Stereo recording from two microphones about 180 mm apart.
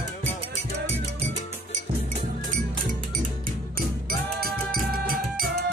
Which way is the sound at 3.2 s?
50° right (ahead or behind).